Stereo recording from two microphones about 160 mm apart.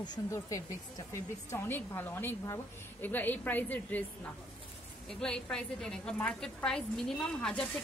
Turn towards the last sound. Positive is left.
turn(degrees=5)  # may be behind; listen again after turning